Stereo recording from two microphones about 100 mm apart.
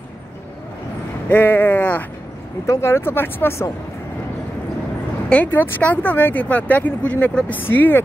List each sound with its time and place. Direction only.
1.3 s speech: 20° left (ahead or behind)
5.3 s speech: 15° left (ahead or behind)